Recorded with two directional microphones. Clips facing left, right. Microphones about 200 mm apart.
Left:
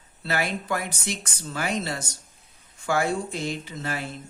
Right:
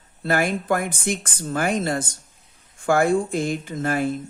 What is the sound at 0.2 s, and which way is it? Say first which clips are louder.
Speech: right 6 dB; 50° right (ahead or behind).